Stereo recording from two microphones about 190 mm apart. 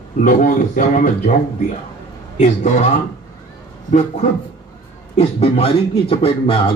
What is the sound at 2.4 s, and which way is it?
Speech, 40° left (ahead or behind).